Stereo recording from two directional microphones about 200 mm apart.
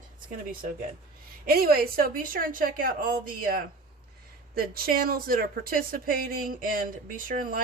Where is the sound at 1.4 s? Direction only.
50° right (ahead or behind).